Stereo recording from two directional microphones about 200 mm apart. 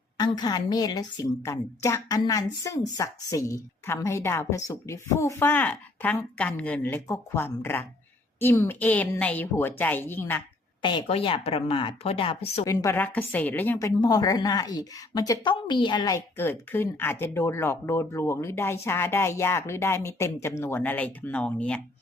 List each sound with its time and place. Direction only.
0.2 s a woman's voice: 20° left (ahead or behind)
10.8 s a woman's voice: 25° left (ahead or behind)
12.6 s a woman's voice: 15° left (ahead or behind)